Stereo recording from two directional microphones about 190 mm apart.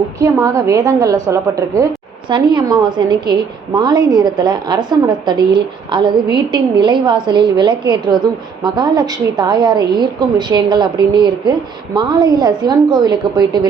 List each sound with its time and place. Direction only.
0.2 s a woman's voice: 15° right (ahead or behind)